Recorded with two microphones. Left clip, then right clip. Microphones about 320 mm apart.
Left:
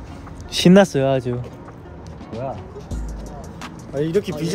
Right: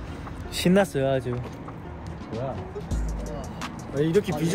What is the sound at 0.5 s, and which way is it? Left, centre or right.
Speech, left.